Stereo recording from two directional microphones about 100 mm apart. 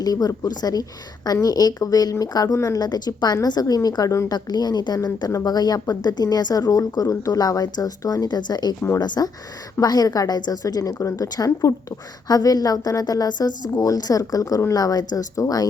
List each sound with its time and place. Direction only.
0.0 s a woman's voice: 40° left (ahead or behind)
4.4 s a woman's voice: 45° left (ahead or behind)